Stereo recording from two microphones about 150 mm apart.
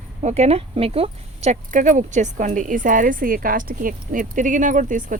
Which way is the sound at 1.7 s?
60° right (ahead or behind).